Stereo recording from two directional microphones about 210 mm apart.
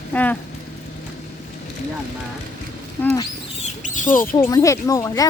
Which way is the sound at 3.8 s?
35° left (ahead or behind).